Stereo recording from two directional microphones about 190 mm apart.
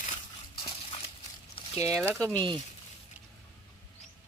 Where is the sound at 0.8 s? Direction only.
30° left (ahead or behind).